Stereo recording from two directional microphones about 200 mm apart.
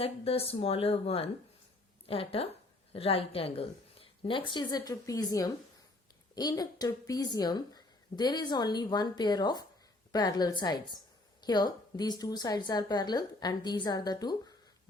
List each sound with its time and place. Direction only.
0.0 s a woman's voice: 30° left (ahead or behind)